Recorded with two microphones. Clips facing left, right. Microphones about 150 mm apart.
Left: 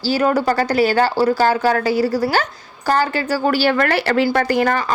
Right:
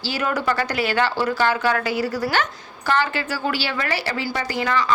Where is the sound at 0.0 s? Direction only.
35° left (ahead or behind).